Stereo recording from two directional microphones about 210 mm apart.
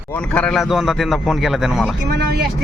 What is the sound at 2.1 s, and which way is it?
Speech, 50° right (ahead or behind).